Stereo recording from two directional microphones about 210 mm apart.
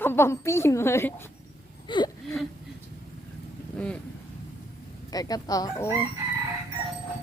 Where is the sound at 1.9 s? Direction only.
20° left (ahead or behind).